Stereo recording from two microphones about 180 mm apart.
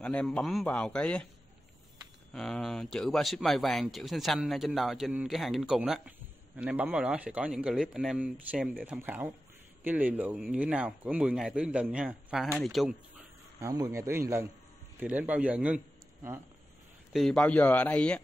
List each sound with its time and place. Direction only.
0.0 s a man's voice: 5° left (ahead or behind)
2.3 s speech: centre (ahead or behind)
13.6 s speech: 20° right (ahead or behind)
17.1 s a man's voice: centre (ahead or behind)